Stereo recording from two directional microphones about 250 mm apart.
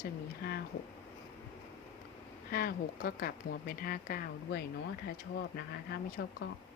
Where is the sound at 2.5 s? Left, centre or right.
Left.